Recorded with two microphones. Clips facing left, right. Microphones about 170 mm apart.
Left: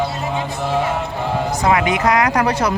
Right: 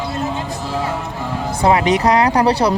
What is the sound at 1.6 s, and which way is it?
Speech, 30° right (ahead or behind).